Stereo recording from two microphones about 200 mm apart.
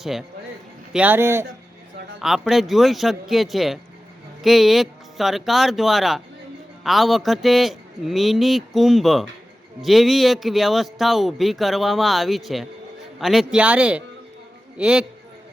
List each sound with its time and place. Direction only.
0.0 s speech: centre (ahead or behind)
2.1 s speech: centre (ahead or behind)